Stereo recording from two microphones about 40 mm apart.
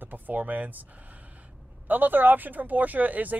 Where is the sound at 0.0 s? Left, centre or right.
Right.